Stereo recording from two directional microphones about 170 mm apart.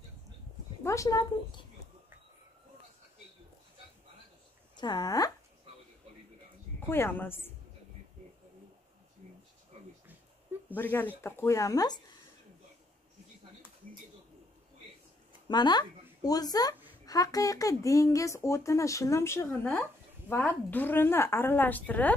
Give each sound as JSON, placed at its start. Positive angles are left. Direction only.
{"t": 0.8, "sound": "speech", "side_deg": 20}
{"t": 4.7, "sound": "speech", "side_deg": 25}
{"t": 6.9, "sound": "speech", "side_deg": 10}
{"t": 10.8, "sound": "speech", "side_deg": 10}
{"t": 15.4, "sound": "speech", "side_deg": 25}